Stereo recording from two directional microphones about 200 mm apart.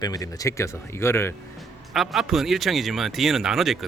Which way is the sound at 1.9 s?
Centre (ahead or behind).